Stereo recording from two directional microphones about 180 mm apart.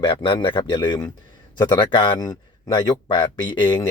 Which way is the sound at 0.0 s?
30° left (ahead or behind).